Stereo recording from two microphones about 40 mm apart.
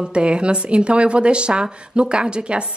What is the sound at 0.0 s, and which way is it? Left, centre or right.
A woman's voice, right.